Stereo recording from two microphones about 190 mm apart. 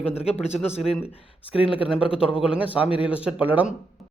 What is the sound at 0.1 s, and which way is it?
Speech, 30° left (ahead or behind).